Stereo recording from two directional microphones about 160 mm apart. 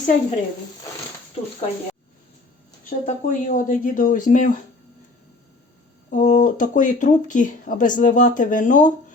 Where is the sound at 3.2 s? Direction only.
55° left (ahead or behind).